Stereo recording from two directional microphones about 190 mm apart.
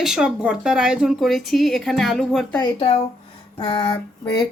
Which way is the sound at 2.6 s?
25° left (ahead or behind).